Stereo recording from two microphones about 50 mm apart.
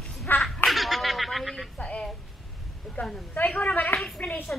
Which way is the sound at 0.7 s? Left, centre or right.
Centre.